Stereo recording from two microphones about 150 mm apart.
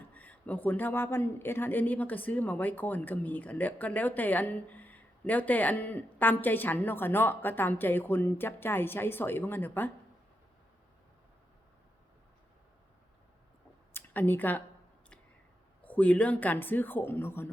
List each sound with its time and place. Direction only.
0.1 s speech: 10° left (ahead or behind)
13.9 s a sound: 15° left (ahead or behind)
15.8 s speech: 10° left (ahead or behind)